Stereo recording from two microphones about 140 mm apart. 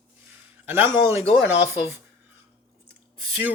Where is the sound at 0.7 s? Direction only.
15° right (ahead or behind).